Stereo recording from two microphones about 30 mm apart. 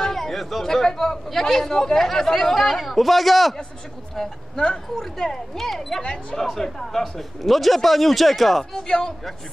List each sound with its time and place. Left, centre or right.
0.0 s chatter: centre
0.7 s speech: centre
4.1 s speech: centre
8.7 s a man's voice: left